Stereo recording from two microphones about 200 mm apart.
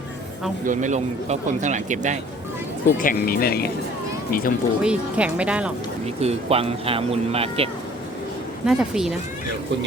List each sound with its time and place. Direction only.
0.6 s speech: 40° right (ahead or behind)
3.0 s speech: 45° left (ahead or behind)
4.8 s speech: 5° right (ahead or behind)
6.1 s speech: 30° right (ahead or behind)
8.6 s speech: 5° right (ahead or behind)